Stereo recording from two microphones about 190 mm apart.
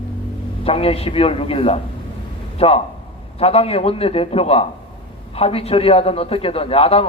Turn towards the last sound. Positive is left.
turn(degrees=30)  # may be behind; listen again after turning